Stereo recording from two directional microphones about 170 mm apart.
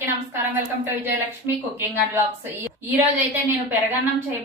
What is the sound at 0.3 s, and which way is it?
A woman's voice, 10° right (ahead or behind).